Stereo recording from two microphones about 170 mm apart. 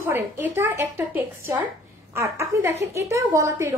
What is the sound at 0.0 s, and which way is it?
A woman's voice, 15° right (ahead or behind).